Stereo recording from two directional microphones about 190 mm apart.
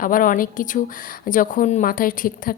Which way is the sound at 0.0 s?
45° left (ahead or behind).